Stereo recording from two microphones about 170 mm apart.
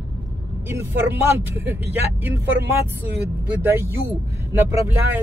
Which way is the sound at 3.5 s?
15° right (ahead or behind).